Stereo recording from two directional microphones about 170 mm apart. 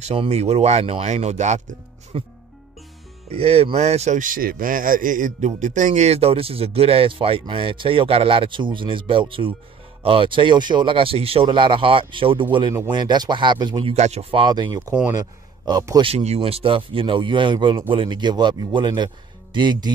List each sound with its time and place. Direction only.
0.0 s a man's voice: 35° right (ahead or behind)
3.3 s a man's voice: 35° right (ahead or behind)
13.9 s a man's voice: 40° right (ahead or behind); by 16.1 s 20° right (ahead or behind)
16.1 s a man's voice: 35° right (ahead or behind)